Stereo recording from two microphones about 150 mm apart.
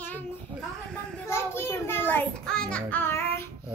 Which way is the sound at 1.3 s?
15° left (ahead or behind).